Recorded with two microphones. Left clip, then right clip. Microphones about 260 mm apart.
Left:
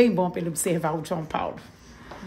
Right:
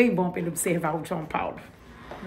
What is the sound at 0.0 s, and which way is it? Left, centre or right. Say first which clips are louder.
Speech: left 2 dB; left.